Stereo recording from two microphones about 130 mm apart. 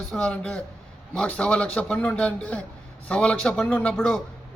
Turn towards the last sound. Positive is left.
turn(degrees=10)  # may be behind; listen again after turning